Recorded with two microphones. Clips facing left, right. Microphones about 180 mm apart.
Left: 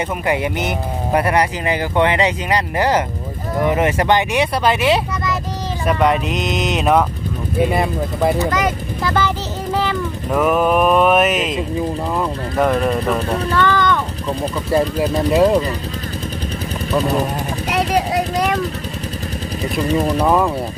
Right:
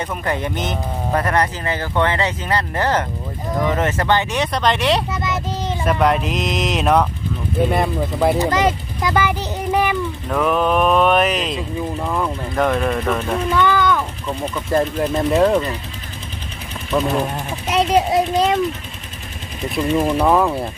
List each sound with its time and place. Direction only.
0.3 s speech: 10° left (ahead or behind)
8.4 s speech: 30° right (ahead or behind)
9.0 s speech: 10° right (ahead or behind)
9.7 s mechanisms: 15° right (ahead or behind)
10.2 s speech: 5° left (ahead or behind)
13.5 s speech: 10° right (ahead or behind)
14.3 s speech: 35° left (ahead or behind)
14.7 s speech: 5° left (ahead or behind)
16.9 s speech: centre (ahead or behind)
17.7 s a sound: 20° right (ahead or behind)
20.0 s speech: centre (ahead or behind)